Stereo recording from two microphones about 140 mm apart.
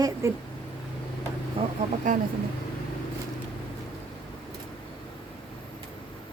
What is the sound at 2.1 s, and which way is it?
Speech, 65° right (ahead or behind).